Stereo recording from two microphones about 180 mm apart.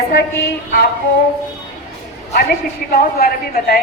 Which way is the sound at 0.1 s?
60° left (ahead or behind).